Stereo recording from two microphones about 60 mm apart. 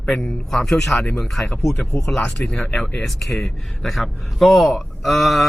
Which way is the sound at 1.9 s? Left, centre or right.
Left.